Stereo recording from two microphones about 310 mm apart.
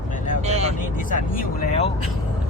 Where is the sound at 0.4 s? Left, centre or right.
Right.